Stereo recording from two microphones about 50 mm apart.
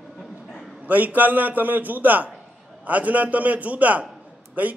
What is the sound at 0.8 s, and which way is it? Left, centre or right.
A man's voice, right.